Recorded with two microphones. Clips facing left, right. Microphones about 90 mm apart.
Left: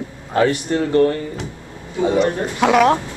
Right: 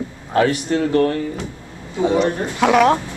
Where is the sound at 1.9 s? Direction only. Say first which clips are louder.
Even; 20° right (ahead or behind).